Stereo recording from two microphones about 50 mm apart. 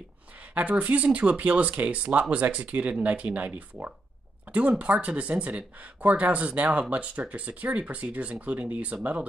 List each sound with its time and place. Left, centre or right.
0.4 s speech: right